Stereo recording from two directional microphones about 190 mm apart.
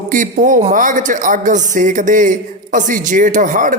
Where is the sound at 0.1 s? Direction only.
45° right (ahead or behind).